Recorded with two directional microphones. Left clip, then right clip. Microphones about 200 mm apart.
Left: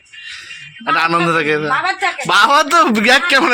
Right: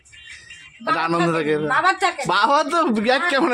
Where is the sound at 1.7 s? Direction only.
40° right (ahead or behind).